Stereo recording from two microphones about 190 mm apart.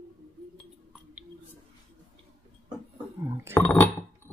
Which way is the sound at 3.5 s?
10° left (ahead or behind).